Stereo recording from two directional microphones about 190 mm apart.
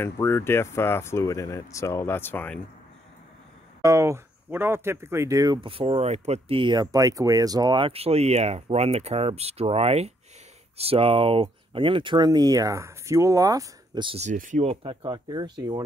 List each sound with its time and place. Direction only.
0.0 s speech: 15° left (ahead or behind)
3.8 s speech: 15° right (ahead or behind)